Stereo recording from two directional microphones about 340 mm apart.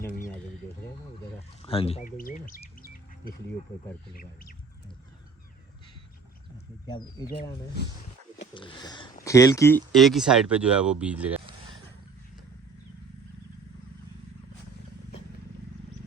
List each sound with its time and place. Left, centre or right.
0.0 s a sound: centre
1.4 s chirp: centre
4.1 s speech: left
6.8 s speech: centre
8.5 s speech: centre